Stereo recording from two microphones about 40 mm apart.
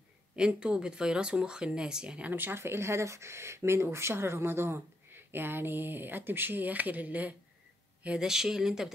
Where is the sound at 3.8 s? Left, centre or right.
Right.